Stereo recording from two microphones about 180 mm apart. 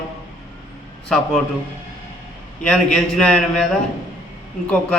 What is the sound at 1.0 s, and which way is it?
Speech, centre (ahead or behind).